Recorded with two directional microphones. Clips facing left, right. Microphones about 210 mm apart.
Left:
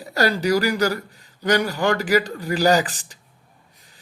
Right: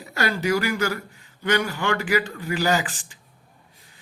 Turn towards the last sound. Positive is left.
turn(degrees=40)  # may be behind; listen again after turning